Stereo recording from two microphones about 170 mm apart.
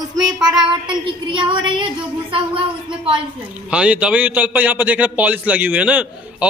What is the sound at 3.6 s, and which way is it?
A man's voice, 5° right (ahead or behind).